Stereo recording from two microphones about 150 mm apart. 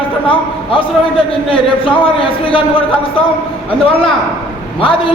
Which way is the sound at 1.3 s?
35° left (ahead or behind).